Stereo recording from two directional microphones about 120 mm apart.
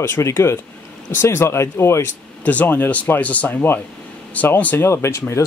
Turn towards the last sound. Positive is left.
turn(degrees=20)  # may be behind; listen again after turning